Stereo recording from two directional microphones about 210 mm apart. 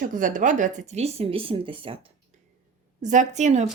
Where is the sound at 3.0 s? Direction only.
35° right (ahead or behind).